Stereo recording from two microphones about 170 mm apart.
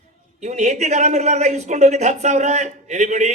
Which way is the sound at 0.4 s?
45° right (ahead or behind).